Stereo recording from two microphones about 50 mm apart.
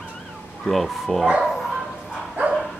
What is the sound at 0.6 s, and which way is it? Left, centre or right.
Speech, centre.